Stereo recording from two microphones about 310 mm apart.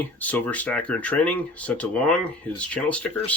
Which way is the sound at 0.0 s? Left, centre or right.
Centre.